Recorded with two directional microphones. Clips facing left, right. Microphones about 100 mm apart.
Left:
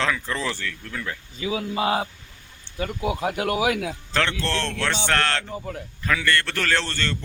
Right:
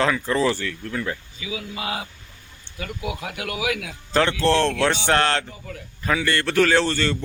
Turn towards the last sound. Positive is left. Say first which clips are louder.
# right 6 dB
turn(degrees=-10)  # may be behind; listen again after turning